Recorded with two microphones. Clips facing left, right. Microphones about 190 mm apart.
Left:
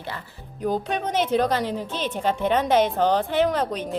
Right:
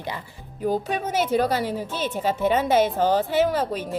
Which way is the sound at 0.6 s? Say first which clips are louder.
Even; 5° right (ahead or behind).